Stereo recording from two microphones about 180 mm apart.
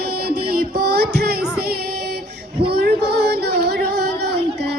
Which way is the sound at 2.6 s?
60° right (ahead or behind).